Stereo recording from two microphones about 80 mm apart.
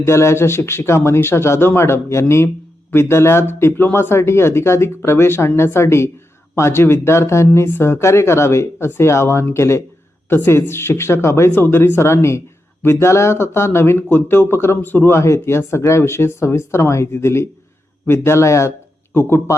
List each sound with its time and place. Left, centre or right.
0.0 s speech: left